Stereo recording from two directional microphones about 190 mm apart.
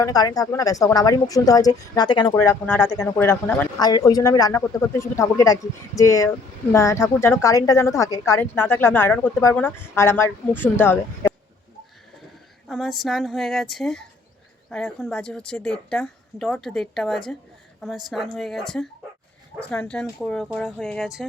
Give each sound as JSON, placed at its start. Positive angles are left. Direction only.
{"t": 0.0, "sound": "a woman's voice", "side_deg": 20}
{"t": 12.6, "sound": "a woman's voice", "side_deg": 0}